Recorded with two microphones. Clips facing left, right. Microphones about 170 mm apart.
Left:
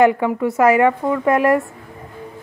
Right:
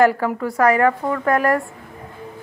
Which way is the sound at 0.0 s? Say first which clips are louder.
Left 2 dB; centre (ahead or behind).